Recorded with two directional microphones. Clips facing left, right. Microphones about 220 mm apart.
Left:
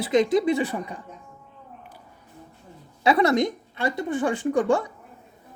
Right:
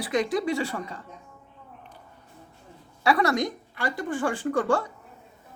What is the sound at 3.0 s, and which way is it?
Speech, 20° left (ahead or behind).